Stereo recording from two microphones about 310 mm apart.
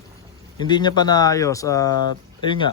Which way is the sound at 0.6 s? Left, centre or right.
Centre.